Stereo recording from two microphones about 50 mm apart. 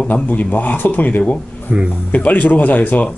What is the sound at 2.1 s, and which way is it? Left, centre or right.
Speech, left.